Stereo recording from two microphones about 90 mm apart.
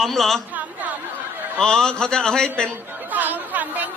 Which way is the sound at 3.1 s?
20° right (ahead or behind).